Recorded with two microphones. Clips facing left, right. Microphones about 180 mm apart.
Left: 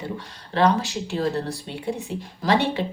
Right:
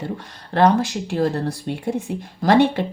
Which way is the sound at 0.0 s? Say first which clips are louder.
Right 3 dB; 55° right (ahead or behind).